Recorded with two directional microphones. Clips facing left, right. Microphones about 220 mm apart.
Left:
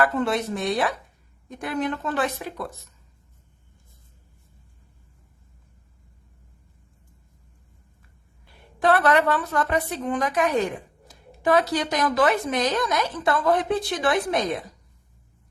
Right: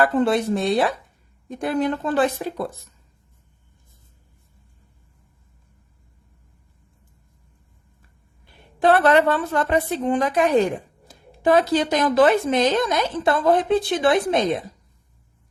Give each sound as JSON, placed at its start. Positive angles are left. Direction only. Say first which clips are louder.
{"t": 0.0, "sound": "a woman's voice", "louder": "right 4 dB", "side_deg": -30}
{"t": 8.8, "sound": "speech", "louder": "right 4 dB", "side_deg": -25}